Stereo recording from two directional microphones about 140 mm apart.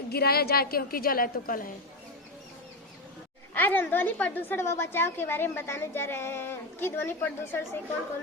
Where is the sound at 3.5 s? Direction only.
15° left (ahead or behind).